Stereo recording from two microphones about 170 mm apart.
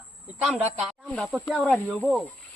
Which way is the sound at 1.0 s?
Centre (ahead or behind).